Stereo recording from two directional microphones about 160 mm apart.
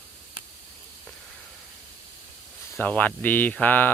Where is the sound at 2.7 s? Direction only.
10° left (ahead or behind).